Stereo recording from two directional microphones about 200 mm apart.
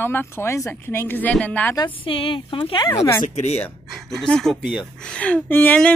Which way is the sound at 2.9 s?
10° left (ahead or behind).